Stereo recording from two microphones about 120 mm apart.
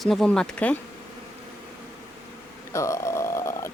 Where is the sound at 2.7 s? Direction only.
25° left (ahead or behind).